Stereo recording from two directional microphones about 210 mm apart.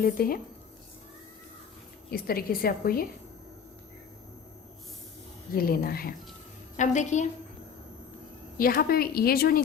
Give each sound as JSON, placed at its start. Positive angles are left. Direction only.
{"t": 0.0, "sound": "a woman's voice", "side_deg": 45}
{"t": 2.0, "sound": "a woman's voice", "side_deg": 45}
{"t": 5.5, "sound": "a woman's voice", "side_deg": 45}
{"t": 6.7, "sound": "a woman's voice", "side_deg": 35}
{"t": 8.5, "sound": "a woman's voice", "side_deg": 45}